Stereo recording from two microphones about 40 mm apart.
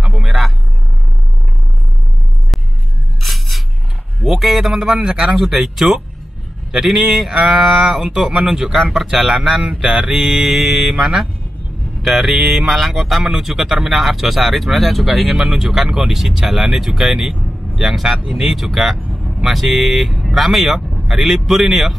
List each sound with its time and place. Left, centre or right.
0.0 s vehicle: centre
3.2 s a sound: centre
4.2 s speech: centre
4.9 s speech: right
11.0 s speech: right
12.0 s speech: centre
15.3 s speech: centre